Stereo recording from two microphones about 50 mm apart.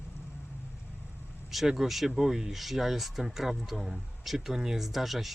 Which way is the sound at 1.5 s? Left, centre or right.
Centre.